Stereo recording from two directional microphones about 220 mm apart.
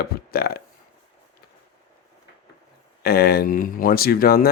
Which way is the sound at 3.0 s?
45° left (ahead or behind).